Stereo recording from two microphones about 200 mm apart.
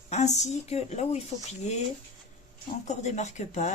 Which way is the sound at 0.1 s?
35° left (ahead or behind).